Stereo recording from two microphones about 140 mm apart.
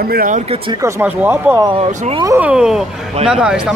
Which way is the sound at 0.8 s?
15° right (ahead or behind).